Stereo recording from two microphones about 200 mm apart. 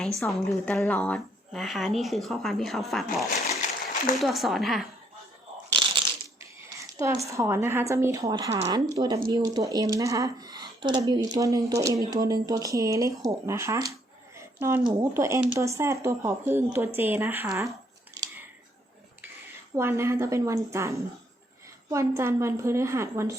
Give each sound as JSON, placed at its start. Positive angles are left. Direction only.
{"t": 0.2, "sound": "a woman's voice", "side_deg": 5}
{"t": 3.3, "sound": "a sound", "side_deg": 35}
{"t": 4.1, "sound": "a woman's voice", "side_deg": 0}
{"t": 5.8, "sound": "crushing", "side_deg": -20}
{"t": 7.0, "sound": "speech", "side_deg": -15}
{"t": 18.1, "sound": "a sound", "side_deg": -15}
{"t": 19.7, "sound": "speech", "side_deg": -10}